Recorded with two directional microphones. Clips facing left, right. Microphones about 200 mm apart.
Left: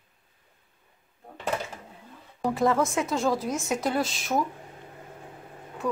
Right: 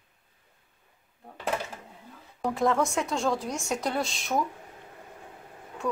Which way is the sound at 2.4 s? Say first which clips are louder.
Left 2 dB; centre (ahead or behind).